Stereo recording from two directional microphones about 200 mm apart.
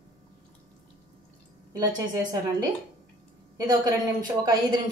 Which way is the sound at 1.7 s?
15° right (ahead or behind).